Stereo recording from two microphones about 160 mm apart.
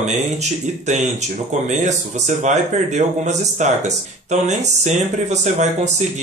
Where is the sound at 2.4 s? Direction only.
45° right (ahead or behind).